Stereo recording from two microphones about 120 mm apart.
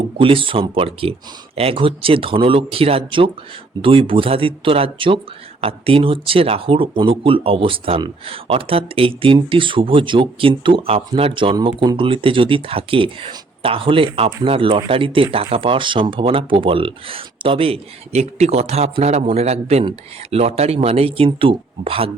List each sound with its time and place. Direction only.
0.2 s speech: 45° right (ahead or behind)